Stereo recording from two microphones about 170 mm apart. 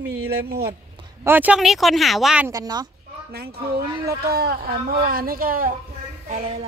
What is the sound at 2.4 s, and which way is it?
Speech, 20° right (ahead or behind).